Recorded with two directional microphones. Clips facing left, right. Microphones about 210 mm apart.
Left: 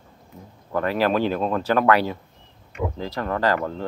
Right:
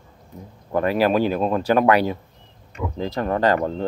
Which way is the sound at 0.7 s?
15° right (ahead or behind).